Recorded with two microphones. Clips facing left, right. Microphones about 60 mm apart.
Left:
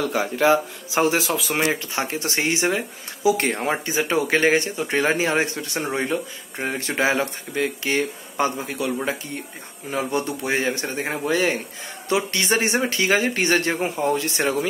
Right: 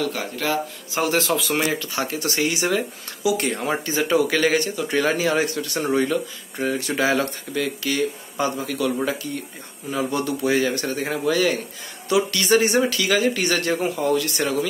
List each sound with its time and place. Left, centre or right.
0.0 s speech: centre
1.1 s speech: centre
1.7 s speech: left